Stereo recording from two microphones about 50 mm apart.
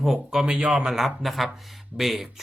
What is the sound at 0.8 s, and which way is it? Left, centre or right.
Speech, centre.